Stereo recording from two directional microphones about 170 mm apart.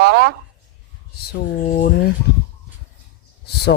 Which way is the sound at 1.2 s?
65° left (ahead or behind).